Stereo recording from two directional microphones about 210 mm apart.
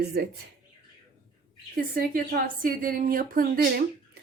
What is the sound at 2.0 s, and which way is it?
A woman's voice, 40° right (ahead or behind).